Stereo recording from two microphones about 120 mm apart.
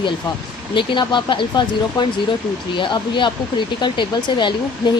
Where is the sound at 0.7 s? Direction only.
40° left (ahead or behind).